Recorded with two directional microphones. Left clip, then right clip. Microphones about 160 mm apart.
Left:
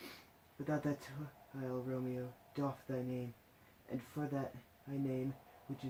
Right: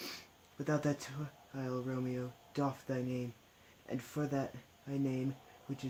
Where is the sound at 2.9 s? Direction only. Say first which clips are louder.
Right 3 dB; 75° right (ahead or behind).